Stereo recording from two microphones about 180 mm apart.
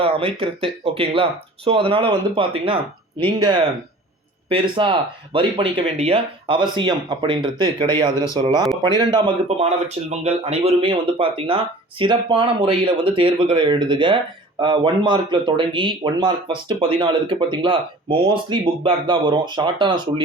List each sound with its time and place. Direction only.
0.0 s speech: 30° right (ahead or behind)